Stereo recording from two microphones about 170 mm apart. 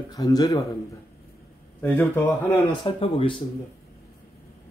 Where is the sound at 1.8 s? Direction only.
10° left (ahead or behind).